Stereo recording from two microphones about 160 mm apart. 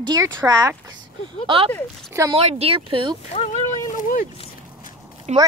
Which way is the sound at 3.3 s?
45° left (ahead or behind).